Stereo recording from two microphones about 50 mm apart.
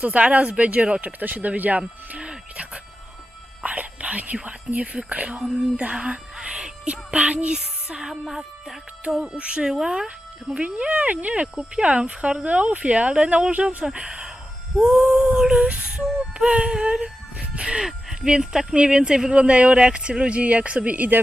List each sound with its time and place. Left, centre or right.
0.0 s speech: right
1.0 s speech: right
1.8 s music: centre
4.4 s speech: right
9.3 s speech: right
9.6 s music: centre
10.5 s speech: right
14.8 s music: centre
18.3 s speech: centre; by 21.2 s right